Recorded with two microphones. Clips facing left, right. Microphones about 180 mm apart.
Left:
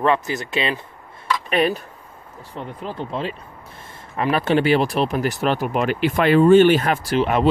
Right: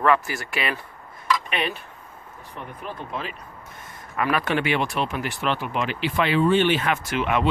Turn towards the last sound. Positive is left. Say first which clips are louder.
# left 5 dB
turn(degrees=35)  # may be behind; listen again after turning